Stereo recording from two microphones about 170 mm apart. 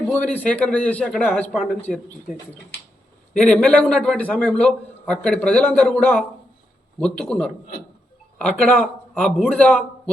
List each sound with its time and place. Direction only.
0.1 s a man's voice: 10° left (ahead or behind)
3.3 s a man's voice: 5° left (ahead or behind)